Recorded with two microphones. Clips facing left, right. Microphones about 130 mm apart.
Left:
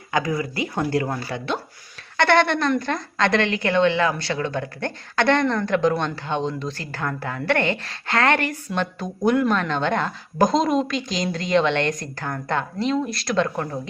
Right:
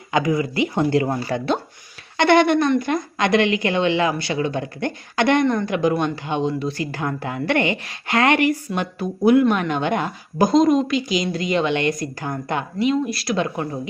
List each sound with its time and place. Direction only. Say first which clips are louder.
0.1 s speech: right 4 dB; 20° right (ahead or behind)
1.3 s speech: right 6 dB; 40° right (ahead or behind)
2.1 s a woman's voice: right 3 dB; 15° right (ahead or behind)